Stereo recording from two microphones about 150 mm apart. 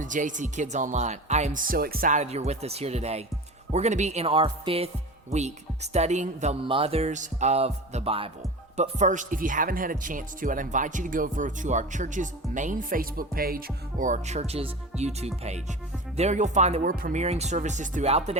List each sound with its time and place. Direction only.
0.0 s speech: 60° right (ahead or behind)
1.6 s speech: 80° right; by 4.9 s 40° right (ahead or behind)
5.3 s speech: 50° right (ahead or behind)
6.7 s speech: 40° right (ahead or behind)
8.7 s speech: 50° right (ahead or behind); by 14.1 s 80° right
14.1 s speech: 50° right (ahead or behind)
16.8 s speech: 70° right (ahead or behind)
17.2 s speech: 45° right (ahead or behind)